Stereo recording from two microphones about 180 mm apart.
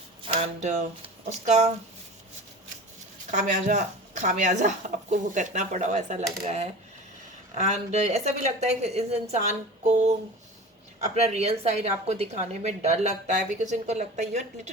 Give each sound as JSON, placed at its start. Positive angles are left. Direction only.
{"t": 0.3, "sound": "speech", "side_deg": -40}
{"t": 3.3, "sound": "speech", "side_deg": -40}
{"t": 7.5, "sound": "speech", "side_deg": -40}